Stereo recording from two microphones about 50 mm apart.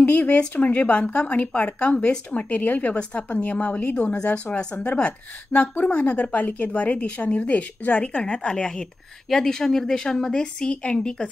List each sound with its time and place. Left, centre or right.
0.0 s a woman's voice: left